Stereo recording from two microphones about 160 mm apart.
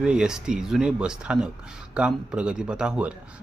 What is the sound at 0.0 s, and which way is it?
Speech, 5° right (ahead or behind).